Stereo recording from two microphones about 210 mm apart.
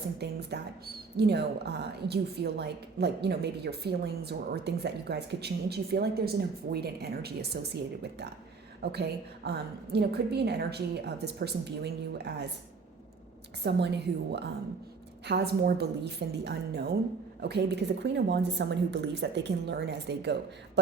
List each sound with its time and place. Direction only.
0.2 s a woman's voice: 50° right (ahead or behind)
13.7 s a woman's voice: 55° right (ahead or behind)